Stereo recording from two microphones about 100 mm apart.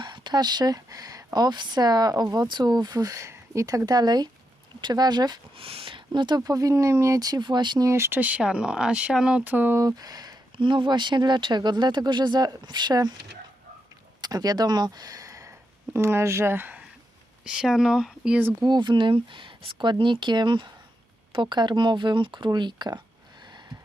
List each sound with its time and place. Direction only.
0.0 s speech: 50° right (ahead or behind)
5.5 s speech: 65° right (ahead or behind)
6.1 s speech: 45° right (ahead or behind)
7.9 s speech: 25° right (ahead or behind)
9.8 s speech: 40° right (ahead or behind)
10.6 s speech: 55° right (ahead or behind)
14.2 s speech: 40° right (ahead or behind); by 16.8 s 20° right (ahead or behind)
17.4 s speech: 5° right (ahead or behind)
18.6 s speech: 50° right (ahead or behind)
23.4 s a sound: 50° right (ahead or behind)